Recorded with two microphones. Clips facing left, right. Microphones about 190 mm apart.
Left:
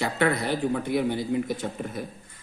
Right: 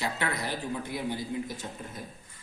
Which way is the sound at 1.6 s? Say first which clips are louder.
Left 8 dB; 80° left.